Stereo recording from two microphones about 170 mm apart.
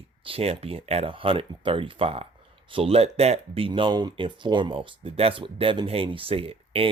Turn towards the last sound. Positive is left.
turn(degrees=-35)  # may be behind; listen again after turning